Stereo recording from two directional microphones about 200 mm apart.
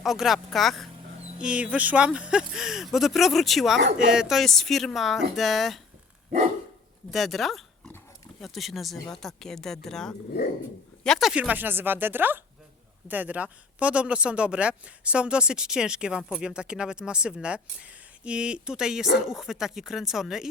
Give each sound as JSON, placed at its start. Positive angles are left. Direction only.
{"t": 0.0, "sound": "speech", "side_deg": 0}
{"t": 7.1, "sound": "speech", "side_deg": 0}